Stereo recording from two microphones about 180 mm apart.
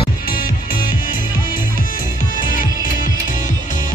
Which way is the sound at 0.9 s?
50° left (ahead or behind).